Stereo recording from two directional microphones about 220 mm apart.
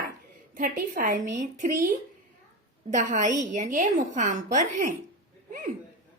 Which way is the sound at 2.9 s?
35° right (ahead or behind).